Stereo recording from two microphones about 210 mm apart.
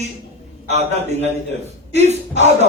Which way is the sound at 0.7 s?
30° right (ahead or behind).